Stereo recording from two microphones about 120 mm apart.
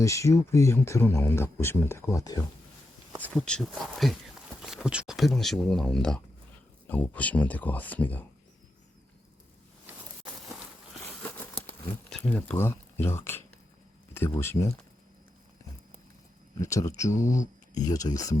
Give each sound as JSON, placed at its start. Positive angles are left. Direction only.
{"t": 0.0, "sound": "speech", "side_deg": 25}
{"t": 3.3, "sound": "speech", "side_deg": 5}
{"t": 11.2, "sound": "crumpling", "side_deg": 10}
{"t": 12.1, "sound": "speech", "side_deg": 10}
{"t": 16.6, "sound": "speech", "side_deg": 25}
{"t": 17.3, "sound": "a sound", "side_deg": 90}
{"t": 17.8, "sound": "speech", "side_deg": 30}